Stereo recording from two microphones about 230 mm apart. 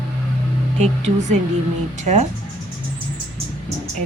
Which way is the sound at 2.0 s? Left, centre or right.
Right.